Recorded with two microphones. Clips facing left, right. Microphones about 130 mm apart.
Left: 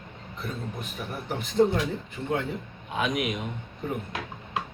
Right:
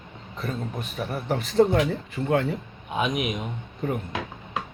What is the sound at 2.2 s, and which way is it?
Speech, 75° right (ahead or behind).